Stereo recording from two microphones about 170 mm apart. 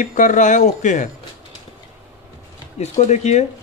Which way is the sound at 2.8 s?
40° left (ahead or behind).